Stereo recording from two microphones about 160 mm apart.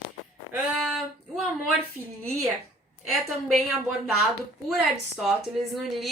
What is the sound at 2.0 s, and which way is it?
Speech, 15° right (ahead or behind).